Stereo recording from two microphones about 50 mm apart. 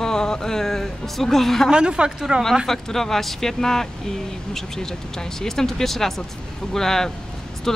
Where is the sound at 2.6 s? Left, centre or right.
Centre.